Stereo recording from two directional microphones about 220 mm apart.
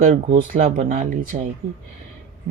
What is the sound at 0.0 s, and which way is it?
Speech, 40° right (ahead or behind).